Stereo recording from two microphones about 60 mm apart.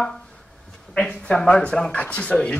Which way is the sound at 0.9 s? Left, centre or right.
Centre.